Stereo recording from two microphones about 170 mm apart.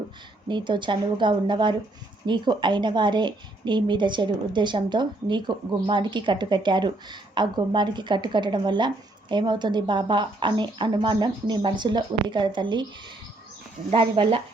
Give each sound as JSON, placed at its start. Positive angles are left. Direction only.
{"t": 0.4, "sound": "a woman's voice", "side_deg": -25}